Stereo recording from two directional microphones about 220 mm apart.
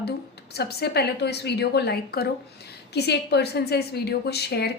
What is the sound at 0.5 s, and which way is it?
Speech, 45° left (ahead or behind).